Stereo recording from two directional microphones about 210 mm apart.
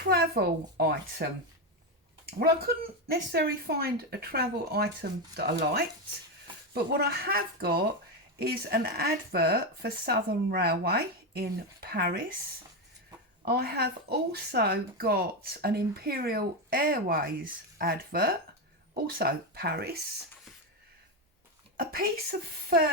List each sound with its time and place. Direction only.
0.0 s speech: 50° right (ahead or behind)
2.4 s speech: 45° right (ahead or behind)
13.4 s speech: 45° right (ahead or behind)
21.8 s speech: 45° right (ahead or behind)